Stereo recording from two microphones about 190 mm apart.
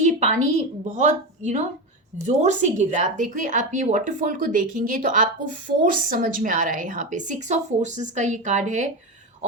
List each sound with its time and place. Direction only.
0.0 s a woman's voice: 40° right (ahead or behind)